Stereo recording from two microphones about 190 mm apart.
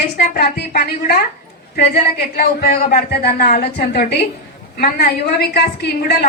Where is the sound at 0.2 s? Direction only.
55° left (ahead or behind).